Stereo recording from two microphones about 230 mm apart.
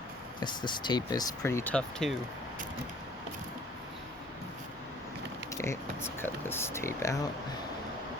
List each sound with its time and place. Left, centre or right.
0.3 s speech: centre
5.5 s speech: centre